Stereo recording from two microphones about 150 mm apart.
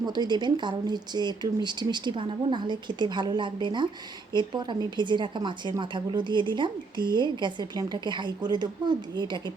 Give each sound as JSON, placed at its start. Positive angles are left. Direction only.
{"t": 0.0, "sound": "a woman's voice", "side_deg": -30}